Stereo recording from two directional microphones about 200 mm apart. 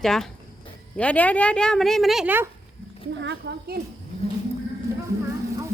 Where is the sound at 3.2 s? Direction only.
60° right (ahead or behind).